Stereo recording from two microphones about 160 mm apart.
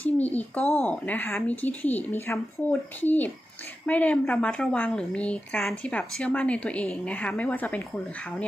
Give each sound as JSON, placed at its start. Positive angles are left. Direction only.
{"t": 0.0, "sound": "a woman's voice", "side_deg": 10}